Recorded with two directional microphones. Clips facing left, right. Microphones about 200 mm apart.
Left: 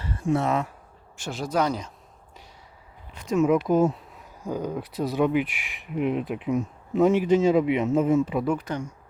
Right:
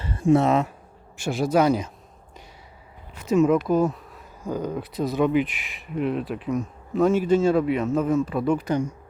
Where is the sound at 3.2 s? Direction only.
5° right (ahead or behind).